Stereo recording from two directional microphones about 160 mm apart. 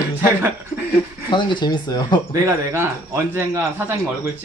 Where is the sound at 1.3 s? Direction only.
30° left (ahead or behind).